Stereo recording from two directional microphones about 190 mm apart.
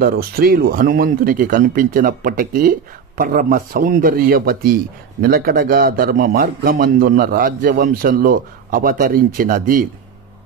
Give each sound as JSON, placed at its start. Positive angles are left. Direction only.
{"t": 0.0, "sound": "a man's voice", "side_deg": -50}